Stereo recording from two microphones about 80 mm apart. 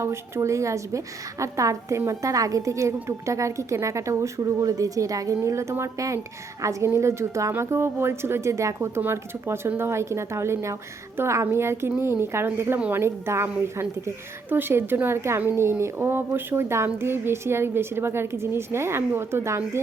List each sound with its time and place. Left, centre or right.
0.0 s a woman's voice: right